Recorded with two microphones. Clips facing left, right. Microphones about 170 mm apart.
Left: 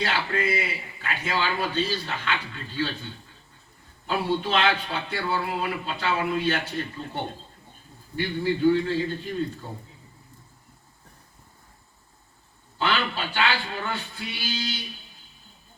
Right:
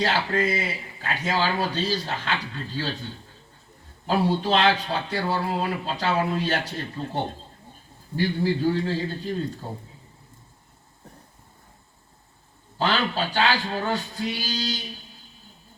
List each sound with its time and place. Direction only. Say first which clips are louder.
0.0 s speech: right 3 dB; 40° right (ahead or behind)
12.8 s speech: right 2 dB; 40° right (ahead or behind)